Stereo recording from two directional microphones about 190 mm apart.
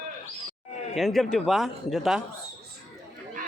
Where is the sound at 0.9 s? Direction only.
Centre (ahead or behind).